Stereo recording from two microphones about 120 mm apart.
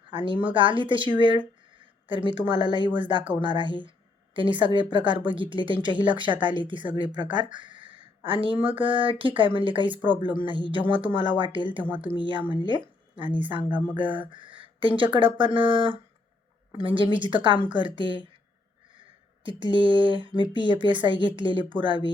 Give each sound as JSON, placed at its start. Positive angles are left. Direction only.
{"t": 0.1, "sound": "a woman's voice", "side_deg": -45}
{"t": 13.7, "sound": "speech", "side_deg": -15}
{"t": 14.3, "sound": "speech", "side_deg": -45}
{"t": 19.4, "sound": "speech", "side_deg": -45}